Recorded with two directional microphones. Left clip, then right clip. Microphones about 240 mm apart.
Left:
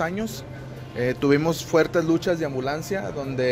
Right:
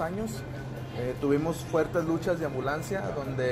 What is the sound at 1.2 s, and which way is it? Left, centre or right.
Speech, left.